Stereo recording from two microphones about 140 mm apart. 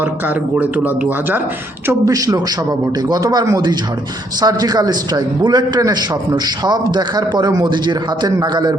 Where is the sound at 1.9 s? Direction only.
25° right (ahead or behind).